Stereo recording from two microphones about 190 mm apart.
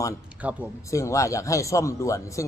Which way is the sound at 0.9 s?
15° left (ahead or behind).